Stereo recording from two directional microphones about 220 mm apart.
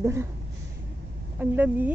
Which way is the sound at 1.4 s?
10° right (ahead or behind).